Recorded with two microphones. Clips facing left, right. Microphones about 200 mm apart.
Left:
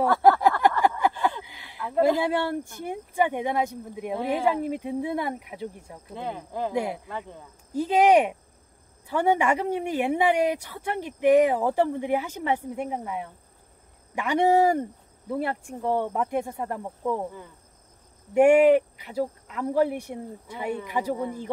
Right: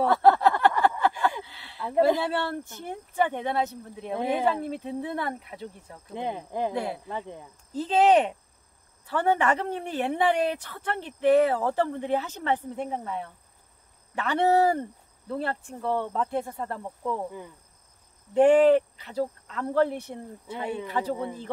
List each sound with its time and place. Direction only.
0.2 s a sound: 10° left (ahead or behind)
2.0 s speech: 15° left (ahead or behind)
6.1 s speech: 15° right (ahead or behind)
6.7 s speech: 15° left (ahead or behind)
7.1 s speech: 15° right (ahead or behind)
7.7 s speech: 10° left (ahead or behind)
18.3 s speech: 10° left (ahead or behind)